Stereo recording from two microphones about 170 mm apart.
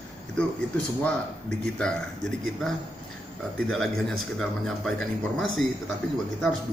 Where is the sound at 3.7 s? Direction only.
5° left (ahead or behind).